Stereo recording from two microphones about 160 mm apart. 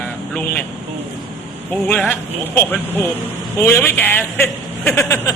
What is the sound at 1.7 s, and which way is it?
Speech, 10° left (ahead or behind).